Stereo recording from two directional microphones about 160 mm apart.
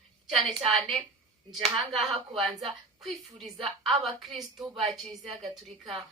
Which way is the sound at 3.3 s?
40° right (ahead or behind).